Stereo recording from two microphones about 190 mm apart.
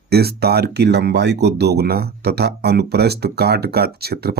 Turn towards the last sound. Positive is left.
turn(degrees=-55)  # may be behind; listen again after turning